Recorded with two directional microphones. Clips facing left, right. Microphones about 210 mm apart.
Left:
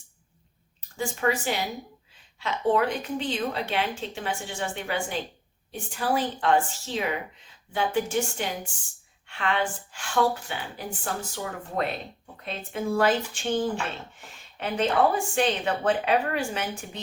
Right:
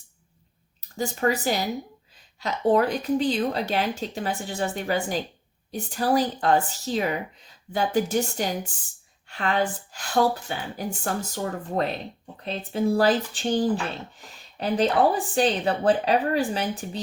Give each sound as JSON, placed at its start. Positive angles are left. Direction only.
{"t": 0.9, "sound": "speech", "side_deg": -40}